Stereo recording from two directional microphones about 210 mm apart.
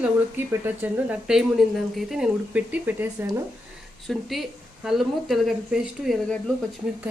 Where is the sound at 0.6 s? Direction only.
10° right (ahead or behind).